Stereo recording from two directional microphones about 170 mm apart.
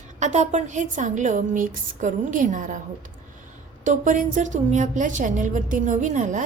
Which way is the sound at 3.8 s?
50° right (ahead or behind).